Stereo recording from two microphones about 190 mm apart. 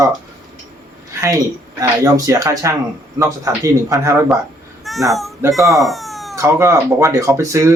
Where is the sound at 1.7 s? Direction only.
20° right (ahead or behind).